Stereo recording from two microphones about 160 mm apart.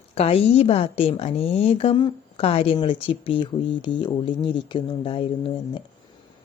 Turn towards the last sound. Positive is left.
turn(degrees=35)  # may be behind; listen again after turning